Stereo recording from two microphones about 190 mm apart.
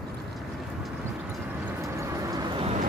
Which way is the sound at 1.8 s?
15° right (ahead or behind).